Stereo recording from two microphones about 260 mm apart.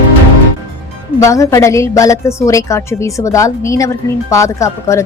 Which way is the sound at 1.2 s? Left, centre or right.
Centre.